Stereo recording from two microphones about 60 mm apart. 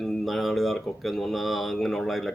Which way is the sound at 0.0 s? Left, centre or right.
Centre.